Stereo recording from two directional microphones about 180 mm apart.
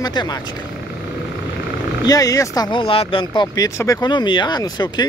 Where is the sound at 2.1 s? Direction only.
20° left (ahead or behind).